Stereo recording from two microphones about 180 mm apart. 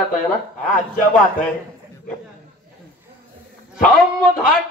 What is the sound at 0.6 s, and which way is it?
Speech, 45° left (ahead or behind).